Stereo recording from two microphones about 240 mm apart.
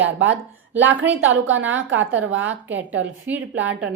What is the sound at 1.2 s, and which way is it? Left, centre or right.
Speech, right.